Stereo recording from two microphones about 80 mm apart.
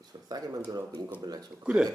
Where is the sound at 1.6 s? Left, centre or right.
Centre.